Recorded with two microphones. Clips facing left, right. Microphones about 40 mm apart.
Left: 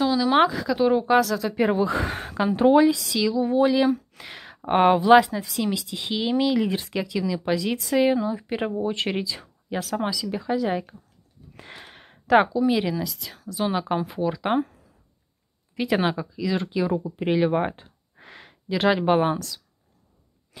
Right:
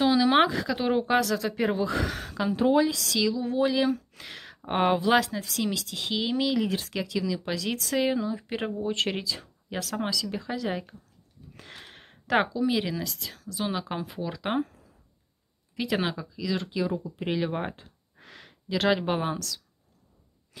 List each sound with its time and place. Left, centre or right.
0.0 s speech: centre
1.5 s speech: centre
1.9 s speech: left
3.1 s speech: centre
4.2 s a sound: centre
4.6 s speech: centre
11.5 s a sound: left
11.9 s speech: centre
15.7 s speech: centre